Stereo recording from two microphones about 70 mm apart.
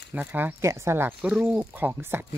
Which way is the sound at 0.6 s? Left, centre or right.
Right.